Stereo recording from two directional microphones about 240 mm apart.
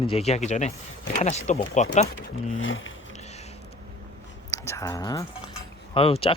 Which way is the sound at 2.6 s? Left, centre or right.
Left.